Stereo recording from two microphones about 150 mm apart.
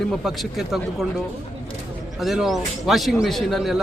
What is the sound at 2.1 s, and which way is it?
A man's voice, centre (ahead or behind).